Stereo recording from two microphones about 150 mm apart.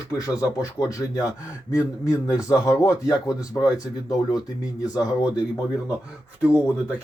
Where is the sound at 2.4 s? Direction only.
20° left (ahead or behind).